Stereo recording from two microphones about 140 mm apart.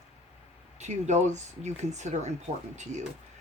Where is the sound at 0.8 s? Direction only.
55° right (ahead or behind).